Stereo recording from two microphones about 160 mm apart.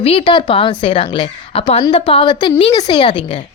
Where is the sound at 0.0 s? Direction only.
35° left (ahead or behind).